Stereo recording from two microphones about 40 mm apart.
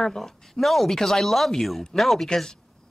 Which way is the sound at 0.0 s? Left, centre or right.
Centre.